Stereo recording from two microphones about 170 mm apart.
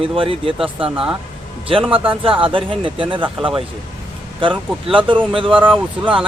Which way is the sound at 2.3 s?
30° right (ahead or behind).